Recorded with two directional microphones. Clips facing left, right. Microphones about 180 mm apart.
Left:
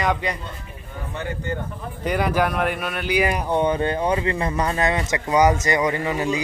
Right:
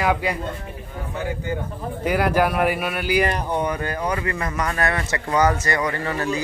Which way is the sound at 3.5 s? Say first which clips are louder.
Left 4 dB; 25° left (ahead or behind).